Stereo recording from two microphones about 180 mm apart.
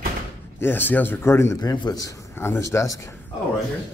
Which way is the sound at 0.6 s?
10° left (ahead or behind).